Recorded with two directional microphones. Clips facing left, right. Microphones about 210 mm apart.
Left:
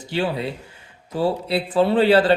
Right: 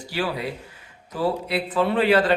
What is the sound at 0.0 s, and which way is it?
Speech, 25° left (ahead or behind).